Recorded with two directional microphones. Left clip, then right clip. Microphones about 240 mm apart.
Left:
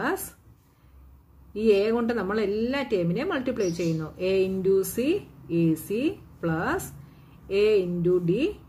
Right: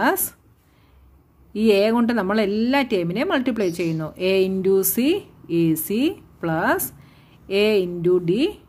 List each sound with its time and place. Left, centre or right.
1.5 s a woman's voice: right